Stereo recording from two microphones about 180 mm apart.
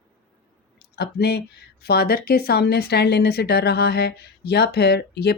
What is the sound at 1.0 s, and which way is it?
A woman's voice, 65° left (ahead or behind).